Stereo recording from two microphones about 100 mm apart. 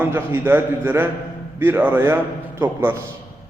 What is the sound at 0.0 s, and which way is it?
A man's voice, 20° right (ahead or behind).